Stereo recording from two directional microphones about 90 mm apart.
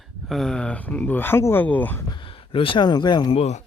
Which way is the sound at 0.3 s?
5° left (ahead or behind).